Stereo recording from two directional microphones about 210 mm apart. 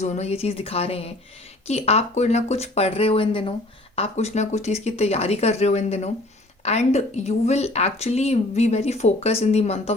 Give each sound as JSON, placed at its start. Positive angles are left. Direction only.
{"t": 0.0, "sound": "speech", "side_deg": 30}